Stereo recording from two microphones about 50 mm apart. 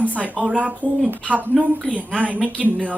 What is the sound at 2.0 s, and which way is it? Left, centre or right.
Speech, right.